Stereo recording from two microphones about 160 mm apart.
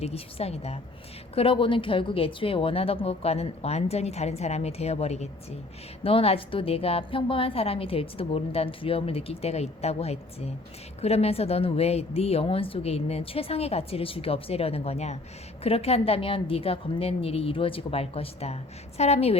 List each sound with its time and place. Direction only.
0.0 s a woman's voice: 40° left (ahead or behind)